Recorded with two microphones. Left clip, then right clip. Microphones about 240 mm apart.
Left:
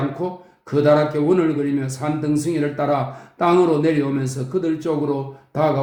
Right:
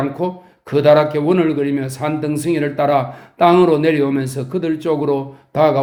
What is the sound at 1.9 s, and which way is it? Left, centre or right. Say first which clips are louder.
Speech: right 2 dB; right.